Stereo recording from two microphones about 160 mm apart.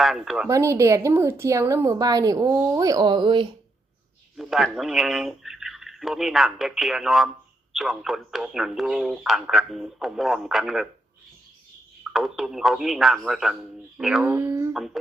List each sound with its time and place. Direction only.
0.0 s speech: centre (ahead or behind)
0.4 s a woman's voice: 20° right (ahead or behind)
4.4 s speech: centre (ahead or behind)
12.1 s speech: centre (ahead or behind)
14.3 s speech: 15° right (ahead or behind)
14.7 s a sound: centre (ahead or behind)